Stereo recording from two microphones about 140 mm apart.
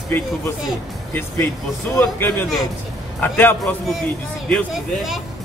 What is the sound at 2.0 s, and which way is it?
A man's voice, 15° left (ahead or behind).